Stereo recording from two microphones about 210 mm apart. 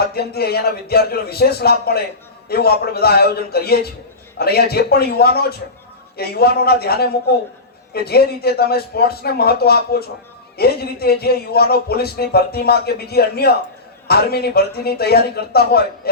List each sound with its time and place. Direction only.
0.0 s a man's voice: 50° left (ahead or behind)